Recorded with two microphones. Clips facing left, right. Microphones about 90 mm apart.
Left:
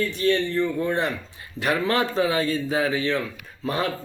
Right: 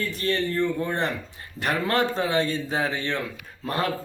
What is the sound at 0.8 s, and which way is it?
Speech, centre (ahead or behind).